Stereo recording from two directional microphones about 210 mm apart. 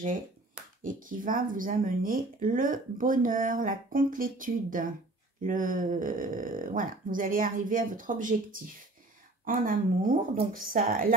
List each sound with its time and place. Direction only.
0.8 s speech: 40° right (ahead or behind)